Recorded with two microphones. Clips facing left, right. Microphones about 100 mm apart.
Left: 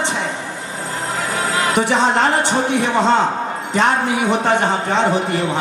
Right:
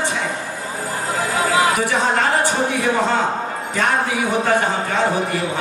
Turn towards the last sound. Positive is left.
turn(degrees=25)  # may be behind; listen again after turning